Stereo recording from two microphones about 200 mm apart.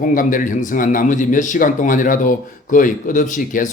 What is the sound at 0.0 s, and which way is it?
A man's voice, 40° left (ahead or behind).